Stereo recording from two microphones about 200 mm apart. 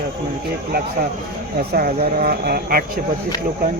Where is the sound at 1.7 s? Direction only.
45° right (ahead or behind).